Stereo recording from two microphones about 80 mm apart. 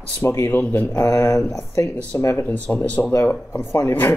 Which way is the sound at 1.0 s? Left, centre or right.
Left.